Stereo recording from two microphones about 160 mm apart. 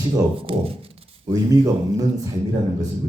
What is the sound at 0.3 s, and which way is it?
Speech, 35° right (ahead or behind).